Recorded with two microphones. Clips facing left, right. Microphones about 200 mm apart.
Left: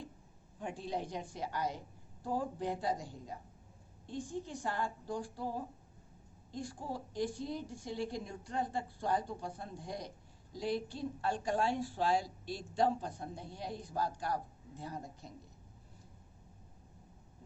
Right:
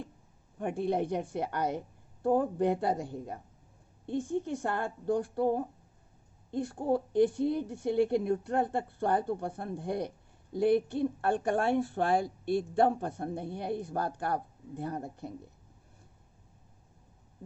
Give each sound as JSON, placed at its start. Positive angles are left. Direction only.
{"t": 0.6, "sound": "a woman's voice", "side_deg": -55}